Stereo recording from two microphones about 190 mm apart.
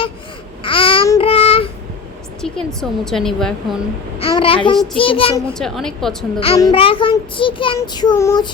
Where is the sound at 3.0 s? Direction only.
Centre (ahead or behind).